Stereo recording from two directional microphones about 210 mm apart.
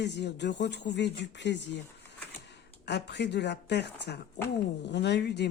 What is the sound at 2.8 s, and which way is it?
Speech, 55° left (ahead or behind).